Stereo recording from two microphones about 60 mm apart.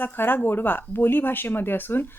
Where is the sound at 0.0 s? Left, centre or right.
Left.